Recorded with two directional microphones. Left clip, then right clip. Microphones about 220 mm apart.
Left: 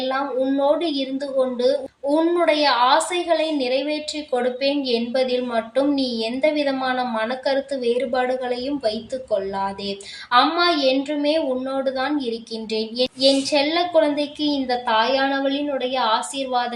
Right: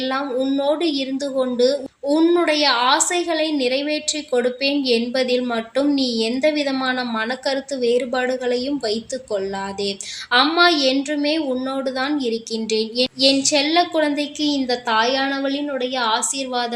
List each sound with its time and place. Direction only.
0.0 s a woman's voice: 50° right (ahead or behind)